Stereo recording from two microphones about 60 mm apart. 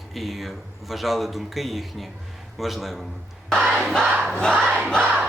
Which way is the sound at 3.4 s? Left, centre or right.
Centre.